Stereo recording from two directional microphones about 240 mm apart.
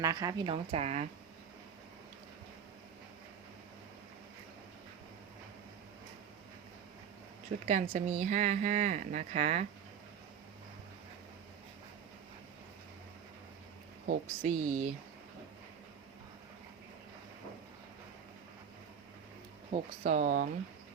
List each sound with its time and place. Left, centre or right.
0.0 s speech: centre
7.7 s speech: right
14.1 s speech: right
19.7 s speech: right